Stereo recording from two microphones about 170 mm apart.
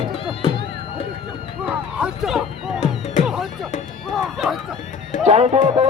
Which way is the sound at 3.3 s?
Centre (ahead or behind).